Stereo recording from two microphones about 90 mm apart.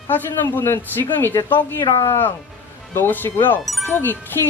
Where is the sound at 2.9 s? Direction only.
25° left (ahead or behind).